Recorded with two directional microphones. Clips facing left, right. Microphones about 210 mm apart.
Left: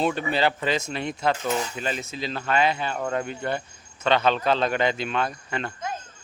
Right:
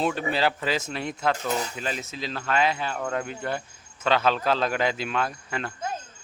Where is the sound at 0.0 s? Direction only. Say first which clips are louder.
Left 1 dB; centre (ahead or behind).